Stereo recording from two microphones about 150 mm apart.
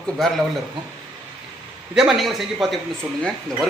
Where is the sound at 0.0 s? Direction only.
Centre (ahead or behind).